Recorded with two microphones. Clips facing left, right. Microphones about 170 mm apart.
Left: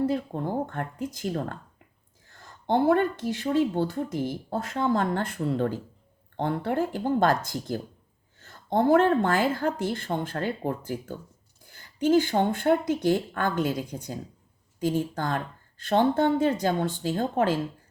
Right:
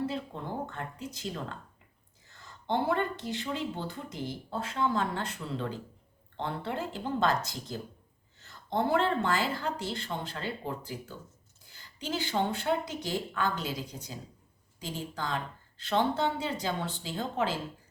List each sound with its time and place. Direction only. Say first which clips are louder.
0.0 s speech: left 8 dB; 45° left (ahead or behind)